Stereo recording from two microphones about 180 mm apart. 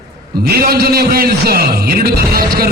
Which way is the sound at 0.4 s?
60° right (ahead or behind).